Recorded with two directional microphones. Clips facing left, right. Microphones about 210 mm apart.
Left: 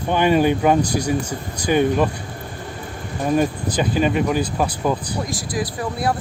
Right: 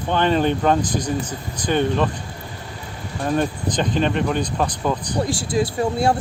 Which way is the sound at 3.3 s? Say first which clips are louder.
Left 2 dB; 10° left (ahead or behind).